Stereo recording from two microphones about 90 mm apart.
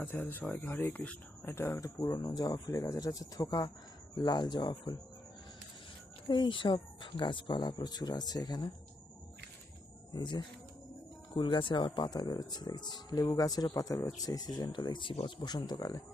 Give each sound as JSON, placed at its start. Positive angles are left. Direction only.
{"t": 0.0, "sound": "speech", "side_deg": 20}
{"t": 0.4, "sound": "speech", "side_deg": 10}
{"t": 0.7, "sound": "speech", "side_deg": 25}
{"t": 6.2, "sound": "speech", "side_deg": 60}
{"t": 10.1, "sound": "speech", "side_deg": 50}
{"t": 11.3, "sound": "speech", "side_deg": 65}
{"t": 15.4, "sound": "speech", "side_deg": 50}